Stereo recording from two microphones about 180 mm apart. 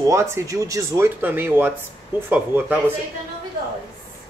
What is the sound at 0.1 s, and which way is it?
Speech, 15° right (ahead or behind).